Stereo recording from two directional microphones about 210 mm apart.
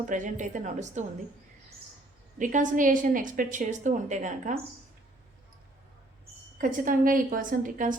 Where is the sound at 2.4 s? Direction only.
40° right (ahead or behind).